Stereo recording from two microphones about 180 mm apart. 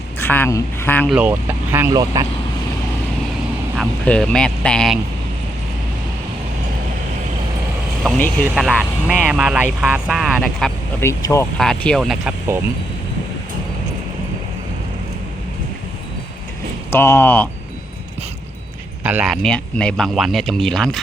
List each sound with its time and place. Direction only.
0.2 s speech: 10° left (ahead or behind)
1.1 s speech: 10° right (ahead or behind)
3.8 s speech: 5° left (ahead or behind)
8.4 s speech: 5° right (ahead or behind)
11.0 s speech: 15° left (ahead or behind)
11.5 s speech: 5° left (ahead or behind)
16.9 s speech: 15° left (ahead or behind)
19.0 s speech: 5° right (ahead or behind)